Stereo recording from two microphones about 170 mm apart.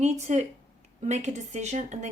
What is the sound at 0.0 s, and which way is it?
A woman's voice, 40° right (ahead or behind).